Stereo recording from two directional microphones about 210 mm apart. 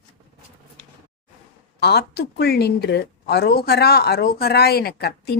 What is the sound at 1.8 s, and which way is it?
Speech, 50° left (ahead or behind).